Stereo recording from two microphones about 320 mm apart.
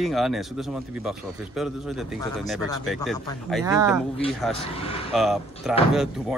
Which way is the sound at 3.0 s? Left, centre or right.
Centre.